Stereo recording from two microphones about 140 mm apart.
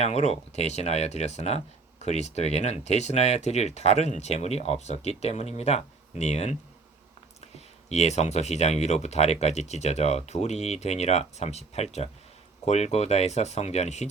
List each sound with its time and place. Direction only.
0.0 s speech: 50° left (ahead or behind)